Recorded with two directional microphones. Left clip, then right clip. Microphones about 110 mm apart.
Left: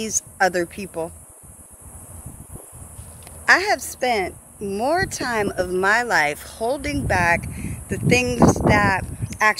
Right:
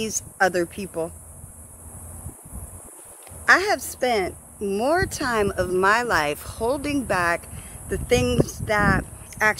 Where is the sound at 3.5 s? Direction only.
35° right (ahead or behind).